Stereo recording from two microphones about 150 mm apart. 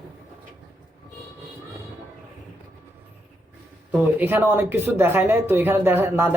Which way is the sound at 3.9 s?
10° right (ahead or behind).